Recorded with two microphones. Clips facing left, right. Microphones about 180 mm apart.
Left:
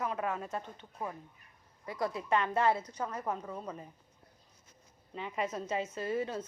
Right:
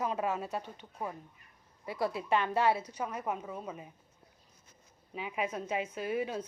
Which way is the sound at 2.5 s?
5° right (ahead or behind).